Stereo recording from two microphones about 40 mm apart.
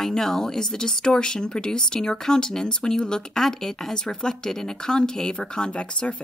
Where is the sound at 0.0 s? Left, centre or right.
Centre.